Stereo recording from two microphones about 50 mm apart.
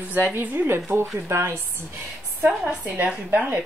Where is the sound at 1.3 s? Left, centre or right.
Right.